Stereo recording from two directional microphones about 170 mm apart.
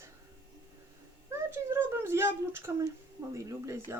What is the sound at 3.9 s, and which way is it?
Speech, 15° right (ahead or behind).